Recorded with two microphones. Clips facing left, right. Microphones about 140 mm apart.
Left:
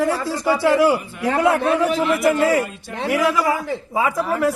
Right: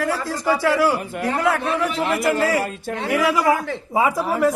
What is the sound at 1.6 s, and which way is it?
Speech, 40° left (ahead or behind).